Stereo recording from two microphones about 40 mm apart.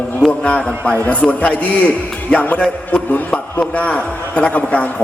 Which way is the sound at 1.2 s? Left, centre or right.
Left.